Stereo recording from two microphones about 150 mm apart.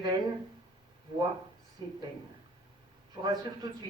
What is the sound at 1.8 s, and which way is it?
Speech, 30° right (ahead or behind).